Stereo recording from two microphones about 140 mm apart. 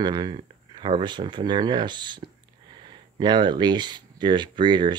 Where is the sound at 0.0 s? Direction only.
30° right (ahead or behind).